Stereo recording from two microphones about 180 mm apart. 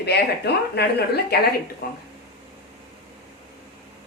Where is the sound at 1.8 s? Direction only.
55° left (ahead or behind).